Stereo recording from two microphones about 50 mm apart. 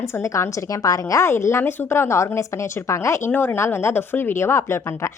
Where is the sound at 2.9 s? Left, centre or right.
Left.